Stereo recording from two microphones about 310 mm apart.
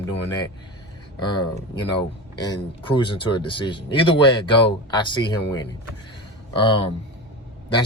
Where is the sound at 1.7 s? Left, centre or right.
Centre.